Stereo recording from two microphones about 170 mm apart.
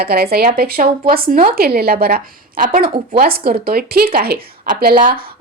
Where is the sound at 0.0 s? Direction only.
65° right (ahead or behind).